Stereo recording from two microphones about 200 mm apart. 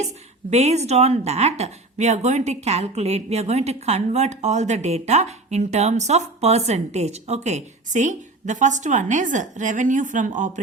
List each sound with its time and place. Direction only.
0.5 s a woman's voice: 35° right (ahead or behind)